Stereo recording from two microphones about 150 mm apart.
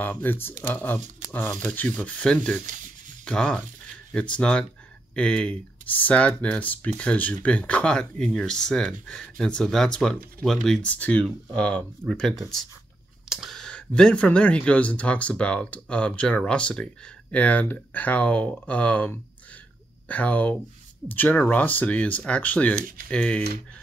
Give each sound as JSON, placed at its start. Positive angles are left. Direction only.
{"t": 0.0, "sound": "speech", "side_deg": 10}
{"t": 2.6, "sound": "speech", "side_deg": -60}
{"t": 3.3, "sound": "speech", "side_deg": 5}